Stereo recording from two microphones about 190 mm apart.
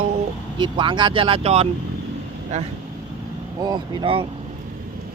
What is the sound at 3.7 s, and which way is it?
Speech, 25° right (ahead or behind).